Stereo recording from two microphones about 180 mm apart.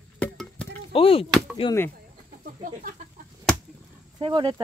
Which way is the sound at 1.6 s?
30° left (ahead or behind).